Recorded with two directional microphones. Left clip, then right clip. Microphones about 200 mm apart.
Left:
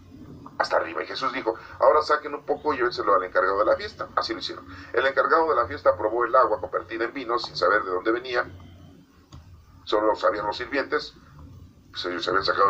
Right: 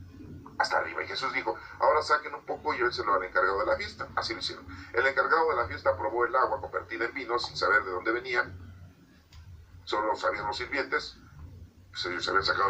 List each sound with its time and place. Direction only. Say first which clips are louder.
0.5 s a man's voice: left 4 dB; 20° left (ahead or behind)
10.0 s a man's voice: left 6 dB; 20° left (ahead or behind)